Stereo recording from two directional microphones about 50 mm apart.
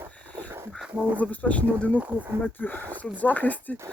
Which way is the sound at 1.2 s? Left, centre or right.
Left.